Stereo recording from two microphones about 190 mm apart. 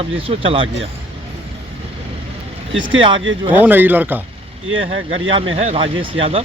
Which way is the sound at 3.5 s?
10° right (ahead or behind).